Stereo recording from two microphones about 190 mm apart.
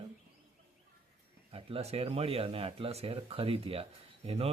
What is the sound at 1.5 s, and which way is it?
Speech, 30° right (ahead or behind).